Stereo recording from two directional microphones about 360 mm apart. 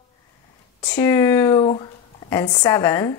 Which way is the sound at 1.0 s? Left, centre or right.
Centre.